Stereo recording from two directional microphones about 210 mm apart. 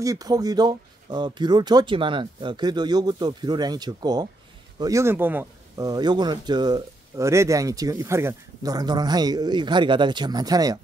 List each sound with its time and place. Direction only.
0.0 s speech: 15° right (ahead or behind)